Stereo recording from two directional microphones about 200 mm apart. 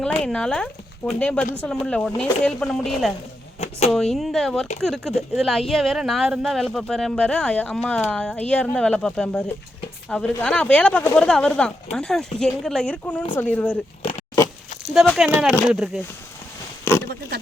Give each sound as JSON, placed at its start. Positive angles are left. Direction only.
{"t": 0.2, "sound": "speech", "side_deg": 5}
{"t": 3.6, "sound": "speech", "side_deg": 30}
{"t": 3.9, "sound": "speech", "side_deg": 0}
{"t": 14.0, "sound": "pig", "side_deg": 25}
{"t": 15.0, "sound": "speech", "side_deg": 0}